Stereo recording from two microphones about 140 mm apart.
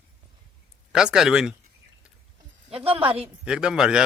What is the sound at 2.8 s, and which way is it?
Speech, 40° right (ahead or behind).